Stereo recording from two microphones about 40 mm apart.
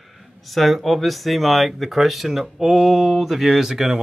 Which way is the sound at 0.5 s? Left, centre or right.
Centre.